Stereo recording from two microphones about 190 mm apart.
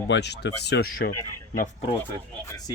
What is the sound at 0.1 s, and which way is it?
Speech, 65° left (ahead or behind).